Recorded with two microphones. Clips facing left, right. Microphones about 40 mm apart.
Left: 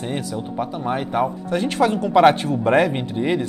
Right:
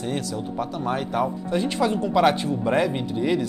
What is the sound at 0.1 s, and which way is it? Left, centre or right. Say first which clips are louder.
Speech: left 2 dB; centre.